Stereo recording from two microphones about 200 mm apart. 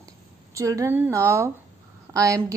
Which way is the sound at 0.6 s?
15° right (ahead or behind).